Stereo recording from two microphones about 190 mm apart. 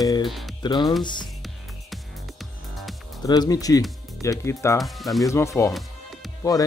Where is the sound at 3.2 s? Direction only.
20° left (ahead or behind).